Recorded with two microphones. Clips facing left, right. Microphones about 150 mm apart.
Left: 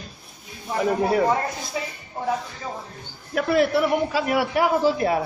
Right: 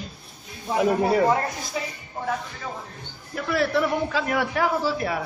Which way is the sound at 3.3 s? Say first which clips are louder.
Left 7 dB; 80° left.